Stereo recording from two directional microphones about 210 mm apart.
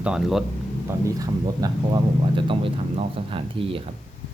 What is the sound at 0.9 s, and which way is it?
Speech, 15° right (ahead or behind).